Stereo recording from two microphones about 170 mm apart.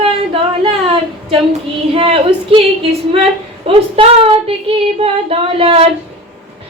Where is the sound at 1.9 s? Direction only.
35° right (ahead or behind).